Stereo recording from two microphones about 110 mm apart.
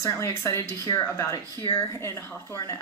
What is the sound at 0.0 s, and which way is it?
A woman's voice, 25° left (ahead or behind).